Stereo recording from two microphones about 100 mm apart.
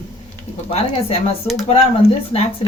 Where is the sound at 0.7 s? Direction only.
75° left (ahead or behind).